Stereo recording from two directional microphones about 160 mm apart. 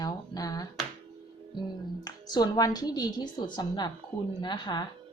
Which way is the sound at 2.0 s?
25° left (ahead or behind).